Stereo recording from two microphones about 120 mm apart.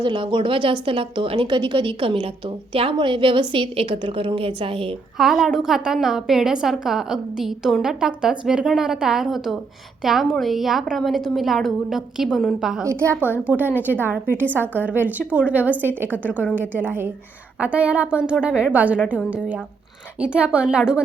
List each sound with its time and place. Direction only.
0.0 s a woman's voice: 40° right (ahead or behind)
5.1 s a woman's voice: centre (ahead or behind)
13.1 s a woman's voice: 15° left (ahead or behind)
13.7 s a woman's voice: 15° right (ahead or behind)